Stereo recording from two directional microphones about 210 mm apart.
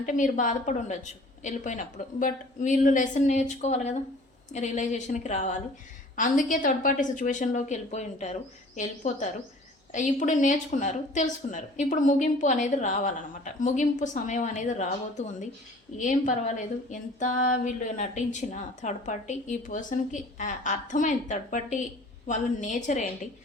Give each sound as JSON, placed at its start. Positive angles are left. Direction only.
{"t": 0.0, "sound": "speech", "side_deg": 35}